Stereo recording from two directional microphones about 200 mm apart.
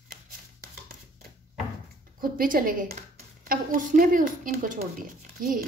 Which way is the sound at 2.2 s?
45° right (ahead or behind).